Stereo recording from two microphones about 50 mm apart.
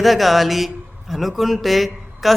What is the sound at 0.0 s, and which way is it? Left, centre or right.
Speech, centre.